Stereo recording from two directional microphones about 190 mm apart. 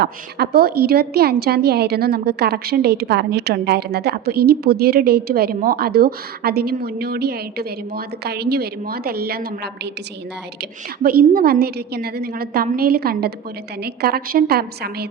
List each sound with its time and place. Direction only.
0.0 s a woman's voice: 55° right (ahead or behind)
11.0 s a woman's voice: 50° right (ahead or behind)